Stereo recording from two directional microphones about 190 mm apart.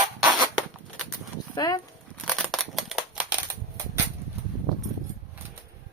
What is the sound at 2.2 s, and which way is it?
Crushing, centre (ahead or behind).